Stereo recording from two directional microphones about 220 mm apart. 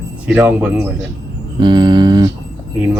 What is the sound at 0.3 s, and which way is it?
Speech, 10° right (ahead or behind).